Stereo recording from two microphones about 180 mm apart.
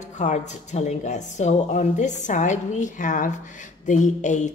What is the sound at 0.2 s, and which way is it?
A woman's voice, 40° left (ahead or behind).